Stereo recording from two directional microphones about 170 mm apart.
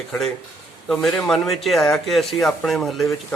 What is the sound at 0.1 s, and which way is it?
Speech, centre (ahead or behind).